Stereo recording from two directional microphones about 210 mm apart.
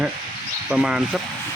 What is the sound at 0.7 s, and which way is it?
Speech, 5° right (ahead or behind).